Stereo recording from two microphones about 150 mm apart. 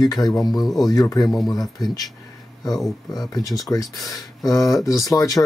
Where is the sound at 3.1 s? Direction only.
25° left (ahead or behind).